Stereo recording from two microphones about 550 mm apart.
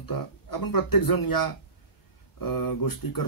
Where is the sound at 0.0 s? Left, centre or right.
Left.